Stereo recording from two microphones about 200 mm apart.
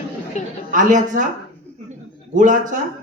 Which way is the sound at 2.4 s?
40° right (ahead or behind).